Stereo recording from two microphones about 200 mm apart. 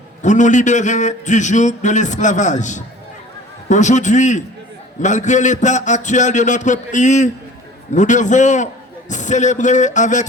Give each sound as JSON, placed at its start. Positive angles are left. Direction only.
{"t": 0.2, "sound": "a man's voice", "side_deg": 35}